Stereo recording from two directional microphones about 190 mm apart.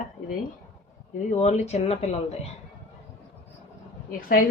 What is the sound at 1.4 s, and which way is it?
Speech, 35° left (ahead or behind).